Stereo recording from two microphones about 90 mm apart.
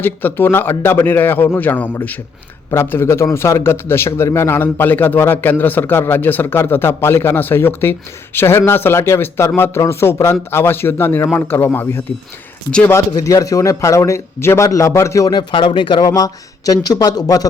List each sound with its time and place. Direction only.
0.0 s a man's voice: 20° left (ahead or behind)
13.2 s a man's voice: 40° left (ahead or behind)
15.3 s speech: 60° left (ahead or behind)